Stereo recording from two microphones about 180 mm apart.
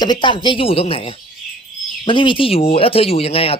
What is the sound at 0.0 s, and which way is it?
Speech, 25° left (ahead or behind).